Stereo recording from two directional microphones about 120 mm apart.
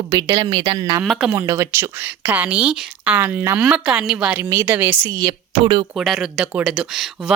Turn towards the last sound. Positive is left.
turn(degrees=-5)  # may be behind; listen again after turning